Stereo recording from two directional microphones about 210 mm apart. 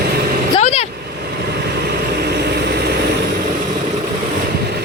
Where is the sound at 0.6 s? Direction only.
30° left (ahead or behind).